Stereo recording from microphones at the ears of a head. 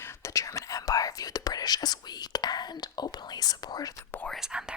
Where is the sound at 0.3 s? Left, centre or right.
Left.